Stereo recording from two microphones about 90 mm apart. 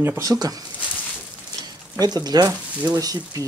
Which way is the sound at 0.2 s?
45° right (ahead or behind).